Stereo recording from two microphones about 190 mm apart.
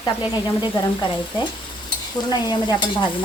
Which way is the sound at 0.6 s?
25° left (ahead or behind).